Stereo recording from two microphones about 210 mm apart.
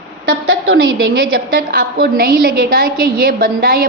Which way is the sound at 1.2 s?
45° right (ahead or behind).